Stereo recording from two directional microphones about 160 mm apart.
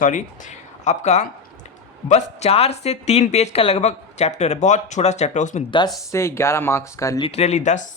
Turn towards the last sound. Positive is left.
turn(degrees=45)  # may be behind; listen again after turning